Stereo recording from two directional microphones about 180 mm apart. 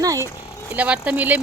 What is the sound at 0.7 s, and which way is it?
Speech, 5° right (ahead or behind).